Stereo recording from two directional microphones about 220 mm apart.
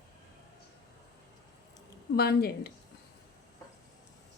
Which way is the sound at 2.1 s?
45° left (ahead or behind).